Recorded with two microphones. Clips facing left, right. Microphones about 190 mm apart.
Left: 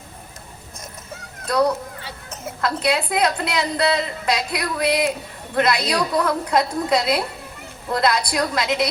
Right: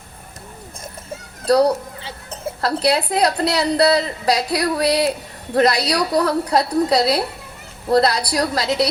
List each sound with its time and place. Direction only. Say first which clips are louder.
1.5 s speech: right 5 dB; 35° right (ahead or behind)